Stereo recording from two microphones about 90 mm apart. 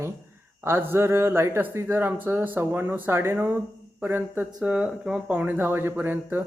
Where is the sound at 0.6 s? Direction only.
25° right (ahead or behind).